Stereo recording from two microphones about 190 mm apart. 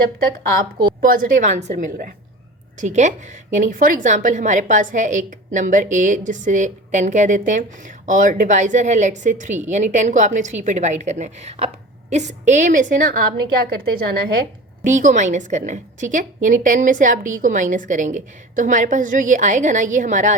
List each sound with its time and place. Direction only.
1.0 s a woman's voice: 45° right (ahead or behind)
14.8 s a woman's voice: 40° right (ahead or behind)